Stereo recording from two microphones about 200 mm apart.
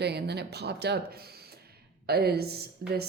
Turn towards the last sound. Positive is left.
turn(degrees=-50)  # may be behind; listen again after turning